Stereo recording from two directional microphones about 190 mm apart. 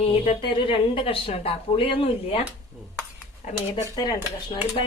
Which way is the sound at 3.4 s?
40° left (ahead or behind).